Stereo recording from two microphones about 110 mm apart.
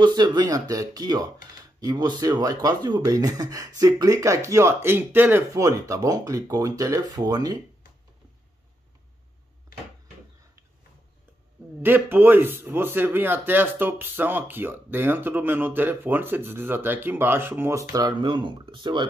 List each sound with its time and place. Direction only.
0.0 s speech: 40° right (ahead or behind); by 5.6 s 20° right (ahead or behind)
5.6 s speech: 30° right (ahead or behind)
11.8 s speech: 20° right (ahead or behind); by 19.0 s 45° right (ahead or behind)